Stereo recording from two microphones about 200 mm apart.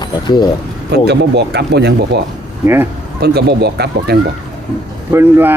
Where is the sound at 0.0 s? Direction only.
20° left (ahead or behind).